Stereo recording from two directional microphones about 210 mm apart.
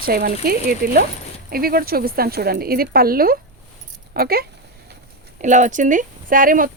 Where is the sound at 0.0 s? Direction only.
45° right (ahead or behind).